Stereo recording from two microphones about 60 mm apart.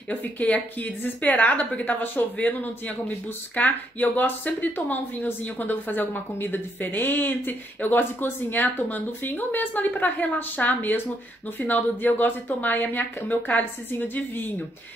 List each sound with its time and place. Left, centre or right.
0.4 s a woman's voice: left